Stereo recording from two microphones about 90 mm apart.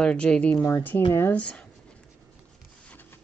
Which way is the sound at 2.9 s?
20° left (ahead or behind).